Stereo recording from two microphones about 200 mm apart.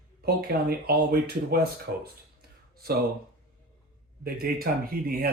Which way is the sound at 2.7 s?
50° right (ahead or behind).